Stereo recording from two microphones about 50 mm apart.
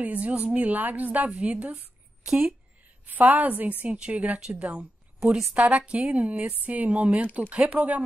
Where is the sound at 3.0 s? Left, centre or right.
Right.